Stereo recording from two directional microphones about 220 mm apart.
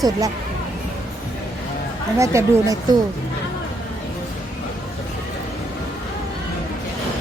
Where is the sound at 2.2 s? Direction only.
15° right (ahead or behind).